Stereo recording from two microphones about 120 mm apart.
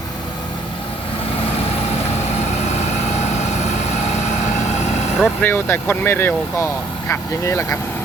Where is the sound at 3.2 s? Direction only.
70° left (ahead or behind).